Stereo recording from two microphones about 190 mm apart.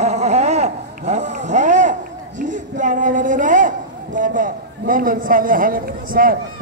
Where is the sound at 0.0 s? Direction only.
35° right (ahead or behind).